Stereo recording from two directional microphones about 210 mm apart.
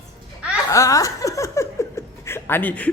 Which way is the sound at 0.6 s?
15° left (ahead or behind).